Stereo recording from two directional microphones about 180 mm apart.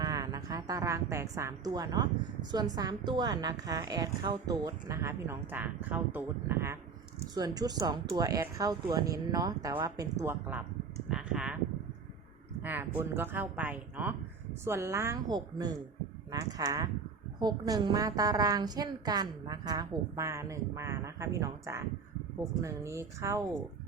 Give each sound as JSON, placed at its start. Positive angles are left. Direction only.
{"t": 0.0, "sound": "a woman's voice", "side_deg": -20}
{"t": 12.6, "sound": "a woman's voice", "side_deg": -10}